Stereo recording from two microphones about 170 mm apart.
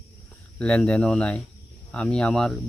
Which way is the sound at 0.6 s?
5° left (ahead or behind).